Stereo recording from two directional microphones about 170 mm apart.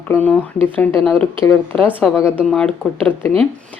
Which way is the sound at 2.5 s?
5° left (ahead or behind).